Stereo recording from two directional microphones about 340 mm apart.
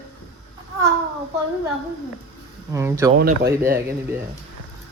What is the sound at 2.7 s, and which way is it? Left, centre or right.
Speech, centre.